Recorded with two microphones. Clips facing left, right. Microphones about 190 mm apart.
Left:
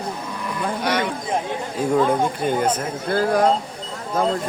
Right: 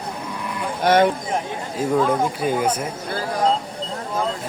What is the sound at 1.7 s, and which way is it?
Speech, centre (ahead or behind).